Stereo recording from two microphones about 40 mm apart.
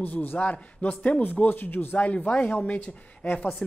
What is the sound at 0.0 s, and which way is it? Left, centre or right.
Speech, left.